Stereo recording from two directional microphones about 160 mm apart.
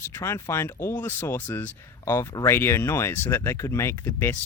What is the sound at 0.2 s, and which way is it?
Speech, 15° left (ahead or behind).